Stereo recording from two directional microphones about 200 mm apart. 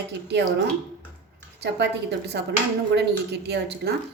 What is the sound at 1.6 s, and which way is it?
Speech, 55° right (ahead or behind).